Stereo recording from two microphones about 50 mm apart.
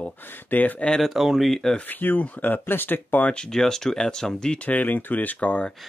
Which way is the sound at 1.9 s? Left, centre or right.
Left.